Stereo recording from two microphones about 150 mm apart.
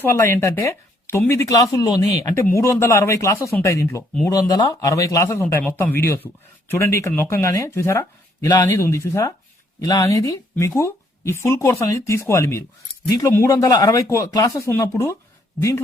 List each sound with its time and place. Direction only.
0.0 s speech: 15° left (ahead or behind)
10.5 s a sound: 20° left (ahead or behind)
11.4 s speech: 20° left (ahead or behind)